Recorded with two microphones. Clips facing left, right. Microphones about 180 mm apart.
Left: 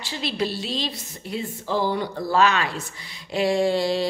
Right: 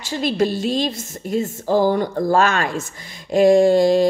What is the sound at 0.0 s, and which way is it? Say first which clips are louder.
A woman's voice: right 7 dB; 45° right (ahead or behind).